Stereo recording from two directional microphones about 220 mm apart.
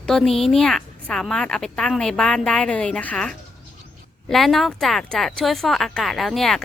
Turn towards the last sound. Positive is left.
turn(degrees=0)  # may be behind; listen again after turning